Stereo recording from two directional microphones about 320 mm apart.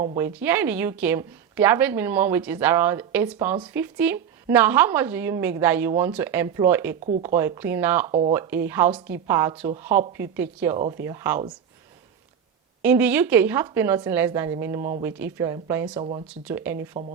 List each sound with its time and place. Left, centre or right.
0.2 s a woman's voice: centre
12.8 s a woman's voice: centre
16.9 s speech: right